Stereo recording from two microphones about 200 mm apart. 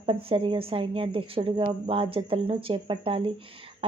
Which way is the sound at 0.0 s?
30° right (ahead or behind).